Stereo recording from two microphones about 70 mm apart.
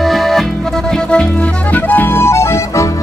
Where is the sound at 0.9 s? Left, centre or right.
Centre.